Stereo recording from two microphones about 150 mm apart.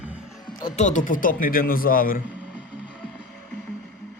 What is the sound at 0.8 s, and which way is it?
Speech, 55° left (ahead or behind).